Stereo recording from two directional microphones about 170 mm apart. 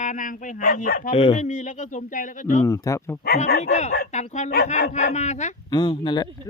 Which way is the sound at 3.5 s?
50° left (ahead or behind).